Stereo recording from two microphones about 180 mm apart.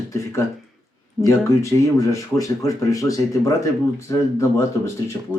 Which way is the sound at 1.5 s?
15° left (ahead or behind).